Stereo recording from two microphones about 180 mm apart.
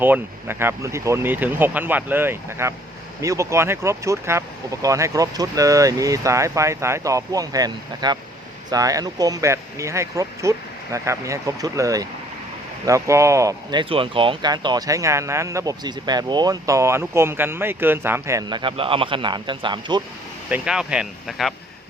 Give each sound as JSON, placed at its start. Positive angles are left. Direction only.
{"t": 0.0, "sound": "speech", "side_deg": -10}
{"t": 20.5, "sound": "speech", "side_deg": -5}